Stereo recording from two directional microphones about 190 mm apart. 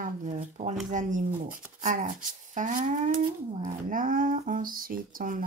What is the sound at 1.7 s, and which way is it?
Speech, 40° right (ahead or behind).